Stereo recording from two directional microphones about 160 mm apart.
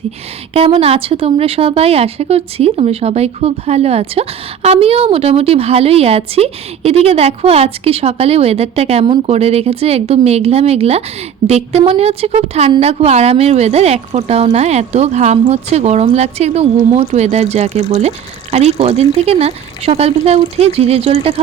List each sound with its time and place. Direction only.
0.5 s a woman's voice: 35° right (ahead or behind)